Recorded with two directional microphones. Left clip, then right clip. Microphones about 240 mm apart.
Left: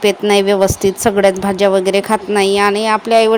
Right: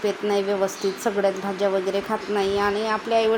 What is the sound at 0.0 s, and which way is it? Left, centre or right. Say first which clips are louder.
A woman's voice: left 11 dB; left.